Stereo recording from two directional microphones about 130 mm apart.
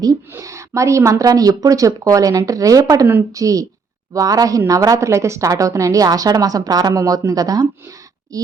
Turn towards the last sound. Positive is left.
turn(degrees=-30)  # may be behind; listen again after turning